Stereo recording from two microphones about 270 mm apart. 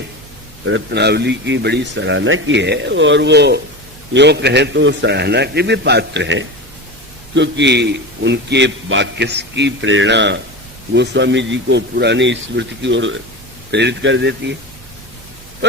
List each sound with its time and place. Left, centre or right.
0.6 s a man's voice: right